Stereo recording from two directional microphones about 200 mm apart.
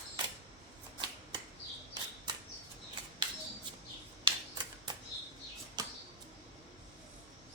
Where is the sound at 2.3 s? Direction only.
20° right (ahead or behind).